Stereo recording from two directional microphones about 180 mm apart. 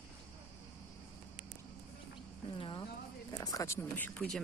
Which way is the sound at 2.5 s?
30° left (ahead or behind).